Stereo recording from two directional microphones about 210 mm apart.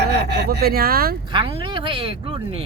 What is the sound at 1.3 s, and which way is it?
Speech, 25° right (ahead or behind).